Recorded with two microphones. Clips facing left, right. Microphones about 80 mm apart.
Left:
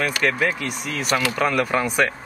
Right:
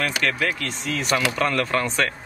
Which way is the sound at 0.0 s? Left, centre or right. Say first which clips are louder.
Left 2 dB; centre.